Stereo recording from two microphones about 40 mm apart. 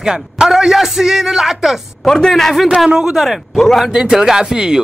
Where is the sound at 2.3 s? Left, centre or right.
Centre.